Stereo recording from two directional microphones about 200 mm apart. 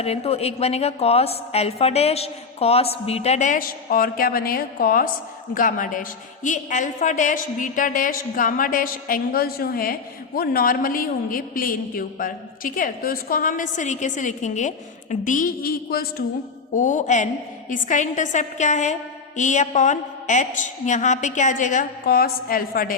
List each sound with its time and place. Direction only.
0.0 s a woman's voice: 30° left (ahead or behind); by 23.0 s 45° left (ahead or behind)